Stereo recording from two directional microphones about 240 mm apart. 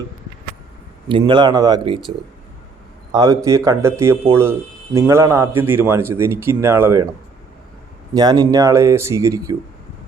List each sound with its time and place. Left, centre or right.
1.0 s speech: centre
3.1 s speech: centre
8.1 s speech: centre